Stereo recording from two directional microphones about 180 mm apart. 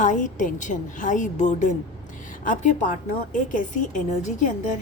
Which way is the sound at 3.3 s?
45° left (ahead or behind).